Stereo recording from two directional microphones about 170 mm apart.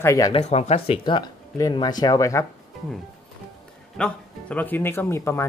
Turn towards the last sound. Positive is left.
turn(degrees=15)  # may be behind; listen again after turning